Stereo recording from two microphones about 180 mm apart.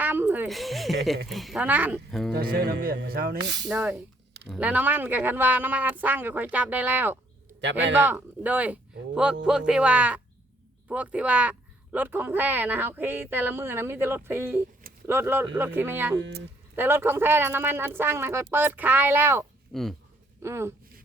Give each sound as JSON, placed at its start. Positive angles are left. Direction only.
{"t": 0.0, "sound": "a sound", "side_deg": -10}
{"t": 0.4, "sound": "speech", "side_deg": 0}
{"t": 2.0, "sound": "speech", "side_deg": 0}
{"t": 2.3, "sound": "speech", "side_deg": -60}
{"t": 3.7, "sound": "speech", "side_deg": -5}
{"t": 19.7, "sound": "speech", "side_deg": 0}
{"t": 20.4, "sound": "speech", "side_deg": -15}